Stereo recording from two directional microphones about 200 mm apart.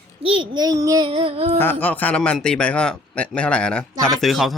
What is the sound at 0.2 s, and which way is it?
A child's voice, 25° right (ahead or behind).